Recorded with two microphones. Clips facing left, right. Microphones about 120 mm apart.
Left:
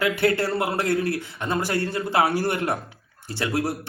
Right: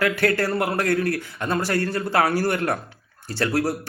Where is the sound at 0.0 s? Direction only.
20° left (ahead or behind).